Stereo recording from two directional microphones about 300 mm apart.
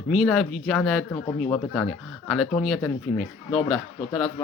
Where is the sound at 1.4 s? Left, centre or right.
Centre.